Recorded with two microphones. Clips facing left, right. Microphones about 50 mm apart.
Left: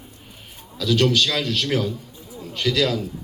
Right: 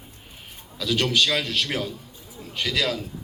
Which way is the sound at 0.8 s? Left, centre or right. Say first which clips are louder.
Left 3 dB; centre.